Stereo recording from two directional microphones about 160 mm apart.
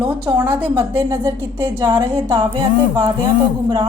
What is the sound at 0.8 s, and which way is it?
A woman's voice, 25° right (ahead or behind).